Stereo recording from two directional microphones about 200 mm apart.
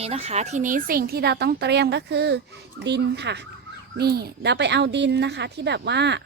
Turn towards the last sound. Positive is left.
turn(degrees=-60)  # may be behind; listen again after turning